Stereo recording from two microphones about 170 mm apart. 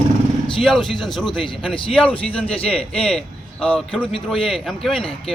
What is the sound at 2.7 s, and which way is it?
Speech, 5° left (ahead or behind).